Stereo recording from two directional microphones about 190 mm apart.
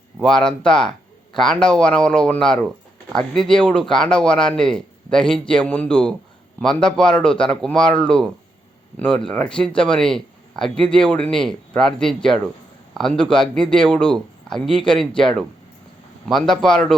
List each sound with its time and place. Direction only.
0.2 s speech: 5° left (ahead or behind)